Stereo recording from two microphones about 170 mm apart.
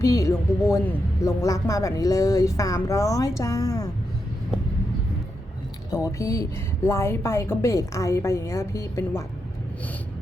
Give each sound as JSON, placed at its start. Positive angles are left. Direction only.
{"t": 0.0, "sound": "speech", "side_deg": 20}
{"t": 5.9, "sound": "a woman's voice", "side_deg": 20}